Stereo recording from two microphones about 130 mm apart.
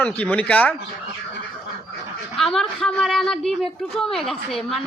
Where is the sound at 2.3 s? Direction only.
5° left (ahead or behind).